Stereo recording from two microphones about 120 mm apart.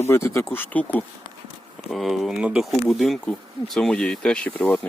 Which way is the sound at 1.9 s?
Centre (ahead or behind).